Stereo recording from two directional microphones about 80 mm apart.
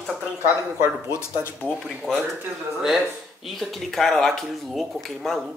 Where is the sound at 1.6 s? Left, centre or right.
Centre.